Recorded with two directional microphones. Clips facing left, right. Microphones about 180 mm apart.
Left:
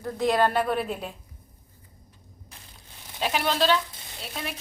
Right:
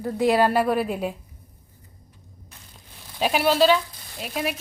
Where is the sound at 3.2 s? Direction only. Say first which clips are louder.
Right 6 dB; 15° right (ahead or behind).